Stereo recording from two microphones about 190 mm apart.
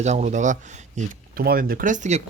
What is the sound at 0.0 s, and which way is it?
Speech, 35° right (ahead or behind).